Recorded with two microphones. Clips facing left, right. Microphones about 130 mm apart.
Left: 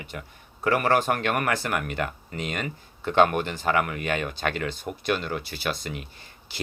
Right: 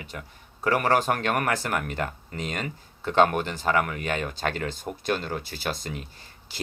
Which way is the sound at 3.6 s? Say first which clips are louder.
Even; 45° right (ahead or behind).